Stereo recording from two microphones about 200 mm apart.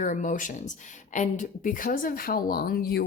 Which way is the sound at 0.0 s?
40° left (ahead or behind).